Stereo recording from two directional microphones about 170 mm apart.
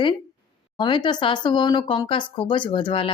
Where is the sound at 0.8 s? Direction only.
25° left (ahead or behind).